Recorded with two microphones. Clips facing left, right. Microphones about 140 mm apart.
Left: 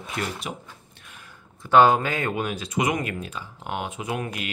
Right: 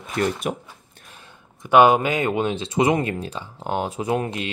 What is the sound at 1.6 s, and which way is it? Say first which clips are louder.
Speech: right 2 dB; 15° right (ahead or behind).